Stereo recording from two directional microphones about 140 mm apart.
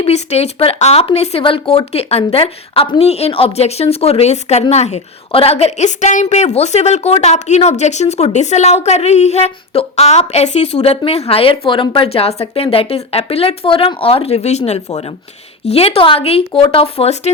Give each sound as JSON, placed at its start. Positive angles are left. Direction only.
{"t": 0.0, "sound": "a woman's voice", "side_deg": 50}